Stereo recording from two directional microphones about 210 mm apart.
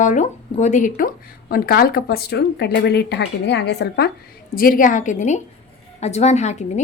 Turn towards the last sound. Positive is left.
turn(degrees=35)  # may be behind; listen again after turning